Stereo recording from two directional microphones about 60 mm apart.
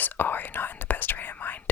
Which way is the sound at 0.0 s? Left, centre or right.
Left.